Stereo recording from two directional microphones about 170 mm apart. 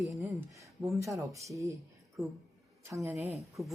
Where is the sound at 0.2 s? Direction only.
15° right (ahead or behind).